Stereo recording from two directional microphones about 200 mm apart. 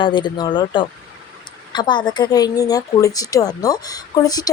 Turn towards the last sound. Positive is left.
turn(degrees=20)  # may be behind; listen again after turning